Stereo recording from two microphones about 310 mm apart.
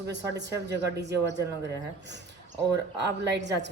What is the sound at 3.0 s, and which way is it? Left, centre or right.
Speech, right.